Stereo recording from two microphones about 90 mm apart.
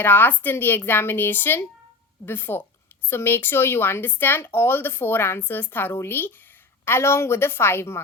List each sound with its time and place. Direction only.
0.0 s speech: 20° left (ahead or behind)